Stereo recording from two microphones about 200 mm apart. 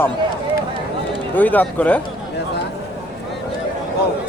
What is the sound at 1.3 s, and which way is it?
Speech, 10° left (ahead or behind).